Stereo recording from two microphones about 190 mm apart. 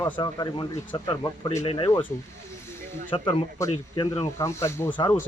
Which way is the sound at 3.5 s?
20° left (ahead or behind).